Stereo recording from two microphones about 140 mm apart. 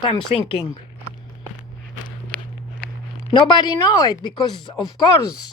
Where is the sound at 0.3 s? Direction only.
45° left (ahead or behind).